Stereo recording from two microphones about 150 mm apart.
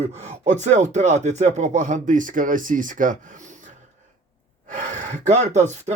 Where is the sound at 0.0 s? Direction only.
50° right (ahead or behind).